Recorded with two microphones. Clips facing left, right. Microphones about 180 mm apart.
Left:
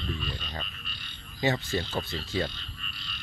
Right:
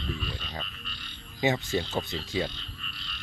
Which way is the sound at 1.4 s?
15° right (ahead or behind).